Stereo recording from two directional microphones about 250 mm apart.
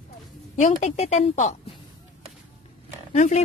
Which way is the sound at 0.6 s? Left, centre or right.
Left.